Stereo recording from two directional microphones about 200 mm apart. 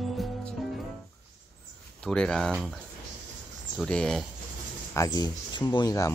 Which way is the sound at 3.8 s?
5° left (ahead or behind).